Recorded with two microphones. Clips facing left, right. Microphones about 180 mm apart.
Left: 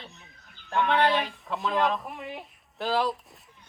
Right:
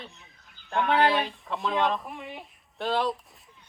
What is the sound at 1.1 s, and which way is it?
Speech, centre (ahead or behind).